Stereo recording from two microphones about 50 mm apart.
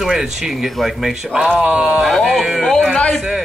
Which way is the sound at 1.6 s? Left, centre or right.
Centre.